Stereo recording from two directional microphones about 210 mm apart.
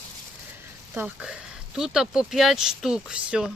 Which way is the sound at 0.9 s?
5° right (ahead or behind).